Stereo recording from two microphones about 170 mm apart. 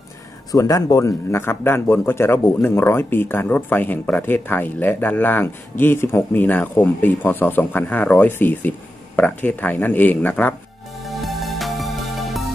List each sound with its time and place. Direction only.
0.5 s speech: 20° left (ahead or behind)
11.1 s music: centre (ahead or behind)